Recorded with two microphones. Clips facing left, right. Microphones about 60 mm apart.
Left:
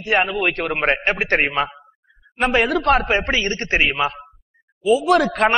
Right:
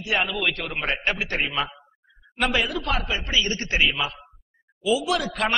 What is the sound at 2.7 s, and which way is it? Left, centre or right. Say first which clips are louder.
A man's voice: left 10 dB; left.